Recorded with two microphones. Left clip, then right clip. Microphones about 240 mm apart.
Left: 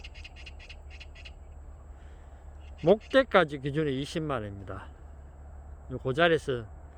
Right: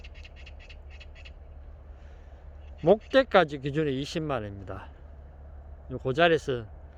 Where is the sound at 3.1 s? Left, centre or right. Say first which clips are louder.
Right 1 dB; centre.